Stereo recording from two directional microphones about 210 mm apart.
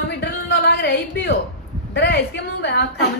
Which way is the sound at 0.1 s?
50° left (ahead or behind).